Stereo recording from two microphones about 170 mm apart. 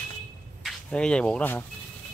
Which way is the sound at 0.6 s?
5° left (ahead or behind).